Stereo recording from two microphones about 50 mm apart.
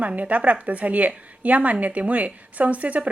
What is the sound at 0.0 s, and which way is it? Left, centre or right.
A woman's voice, right.